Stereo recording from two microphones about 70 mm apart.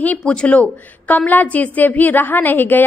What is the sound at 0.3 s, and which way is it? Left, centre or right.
A woman's voice, centre.